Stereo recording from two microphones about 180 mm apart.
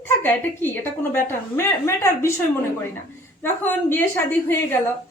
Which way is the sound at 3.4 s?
10° left (ahead or behind).